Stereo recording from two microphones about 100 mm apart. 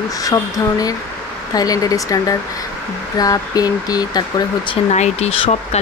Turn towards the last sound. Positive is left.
turn(degrees=90)